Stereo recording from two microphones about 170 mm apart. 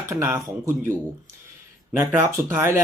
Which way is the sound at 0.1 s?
15° right (ahead or behind).